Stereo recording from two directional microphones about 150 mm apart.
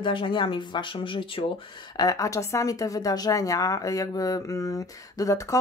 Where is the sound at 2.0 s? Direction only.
25° left (ahead or behind).